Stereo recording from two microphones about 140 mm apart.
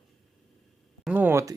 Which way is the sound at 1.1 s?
15° right (ahead or behind).